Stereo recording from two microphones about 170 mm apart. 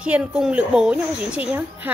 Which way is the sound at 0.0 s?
5° right (ahead or behind).